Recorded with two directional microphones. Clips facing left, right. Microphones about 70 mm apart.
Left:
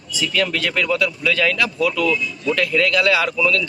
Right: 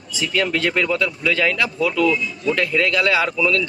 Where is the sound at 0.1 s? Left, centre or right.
Right.